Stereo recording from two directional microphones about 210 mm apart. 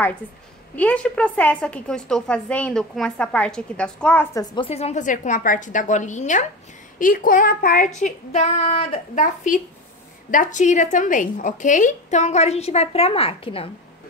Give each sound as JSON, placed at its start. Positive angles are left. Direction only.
{"t": 0.7, "sound": "a woman's voice", "side_deg": 5}
{"t": 4.6, "sound": "a woman's voice", "side_deg": 30}